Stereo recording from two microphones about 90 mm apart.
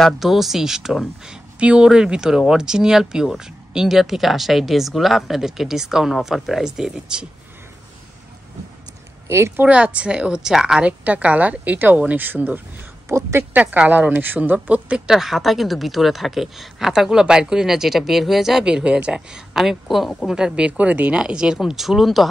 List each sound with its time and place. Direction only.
0.0 s speech: centre (ahead or behind)
9.6 s speech: 15° right (ahead or behind)
10.9 s speech: 15° right (ahead or behind); by 13.5 s 30° right (ahead or behind)
13.5 s a woman's voice: 20° right (ahead or behind)
15.0 s speech: 5° right (ahead or behind)